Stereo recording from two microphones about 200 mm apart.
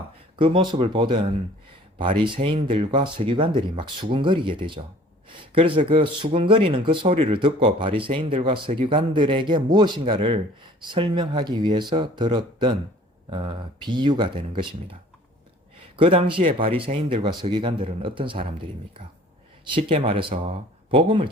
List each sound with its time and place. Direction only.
0.3 s speech: 25° right (ahead or behind)
16.0 s speech: 25° right (ahead or behind)